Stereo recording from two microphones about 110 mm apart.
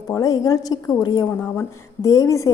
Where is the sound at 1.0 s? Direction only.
45° left (ahead or behind).